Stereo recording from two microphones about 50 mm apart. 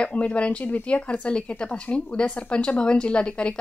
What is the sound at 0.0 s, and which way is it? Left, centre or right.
Speech, left.